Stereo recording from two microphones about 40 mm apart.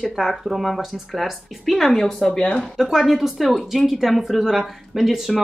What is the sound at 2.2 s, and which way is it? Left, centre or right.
Speech, left.